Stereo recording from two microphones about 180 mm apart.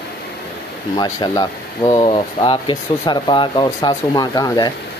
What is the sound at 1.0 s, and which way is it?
Speech, 25° left (ahead or behind).